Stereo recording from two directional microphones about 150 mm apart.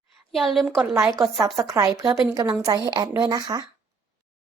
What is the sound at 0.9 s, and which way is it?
A woman's voice, 20° right (ahead or behind).